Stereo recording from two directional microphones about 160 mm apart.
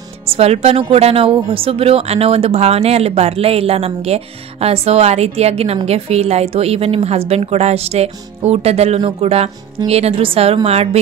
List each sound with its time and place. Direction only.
0.3 s speech: 40° right (ahead or behind)